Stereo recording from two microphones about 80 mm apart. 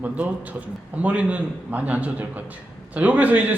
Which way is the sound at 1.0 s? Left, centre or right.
Centre.